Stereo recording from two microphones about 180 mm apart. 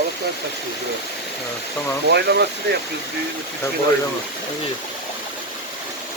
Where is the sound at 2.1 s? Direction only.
65° right (ahead or behind).